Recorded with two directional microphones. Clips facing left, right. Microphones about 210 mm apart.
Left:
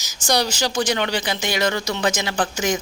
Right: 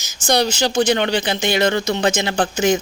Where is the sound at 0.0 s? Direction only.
25° right (ahead or behind).